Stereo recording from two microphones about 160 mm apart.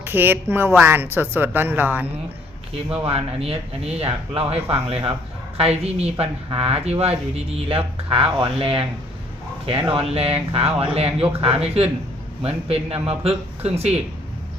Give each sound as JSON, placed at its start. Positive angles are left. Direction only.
{"t": 0.0, "sound": "a woman's voice", "side_deg": -10}
{"t": 3.0, "sound": "speech", "side_deg": -35}
{"t": 9.9, "sound": "speech", "side_deg": -40}